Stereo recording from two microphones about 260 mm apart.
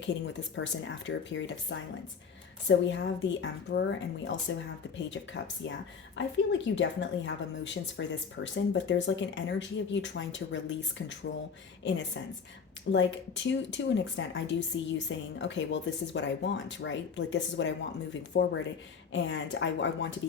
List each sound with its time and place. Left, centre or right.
0.5 s speech: left